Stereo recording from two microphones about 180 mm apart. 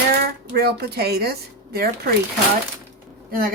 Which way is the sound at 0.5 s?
60° right (ahead or behind).